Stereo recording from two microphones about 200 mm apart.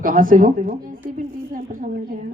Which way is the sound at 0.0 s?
45° right (ahead or behind).